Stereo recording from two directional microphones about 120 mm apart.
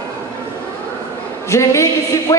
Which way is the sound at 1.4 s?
25° left (ahead or behind).